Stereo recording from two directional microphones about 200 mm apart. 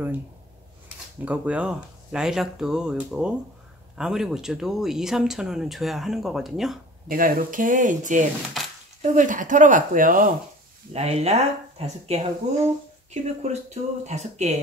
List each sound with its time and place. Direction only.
1.2 s speech: 5° right (ahead or behind)
7.1 s speech: 45° right (ahead or behind)
10.9 s speech: 30° right (ahead or behind)